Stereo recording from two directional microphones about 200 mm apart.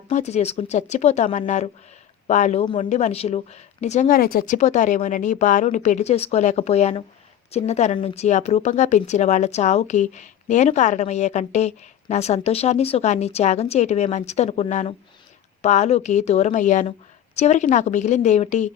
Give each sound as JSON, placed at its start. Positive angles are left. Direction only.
{"t": 0.1, "sound": "speech", "side_deg": 35}